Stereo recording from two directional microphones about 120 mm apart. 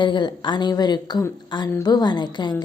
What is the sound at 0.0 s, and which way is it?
A woman's voice, 40° left (ahead or behind).